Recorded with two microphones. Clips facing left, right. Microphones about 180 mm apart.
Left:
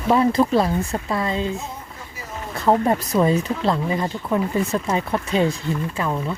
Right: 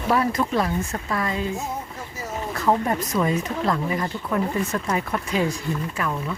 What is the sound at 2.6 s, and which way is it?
Speech, 25° left (ahead or behind).